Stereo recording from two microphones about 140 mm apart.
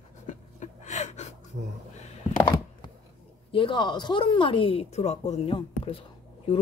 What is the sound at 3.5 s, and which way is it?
Speech, 35° left (ahead or behind).